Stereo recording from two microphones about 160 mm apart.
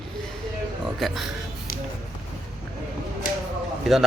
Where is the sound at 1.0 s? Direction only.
Centre (ahead or behind).